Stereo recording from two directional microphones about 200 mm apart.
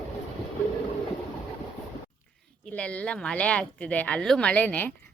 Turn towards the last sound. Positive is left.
turn(degrees=10)  # may be behind; listen again after turning